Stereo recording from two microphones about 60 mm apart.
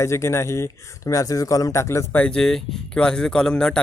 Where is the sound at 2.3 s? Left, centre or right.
Centre.